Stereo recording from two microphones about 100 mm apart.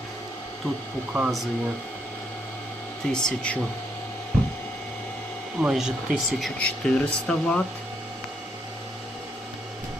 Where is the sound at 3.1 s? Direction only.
10° left (ahead or behind).